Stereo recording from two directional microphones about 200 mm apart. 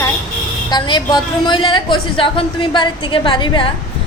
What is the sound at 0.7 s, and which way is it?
A woman's voice, 25° left (ahead or behind).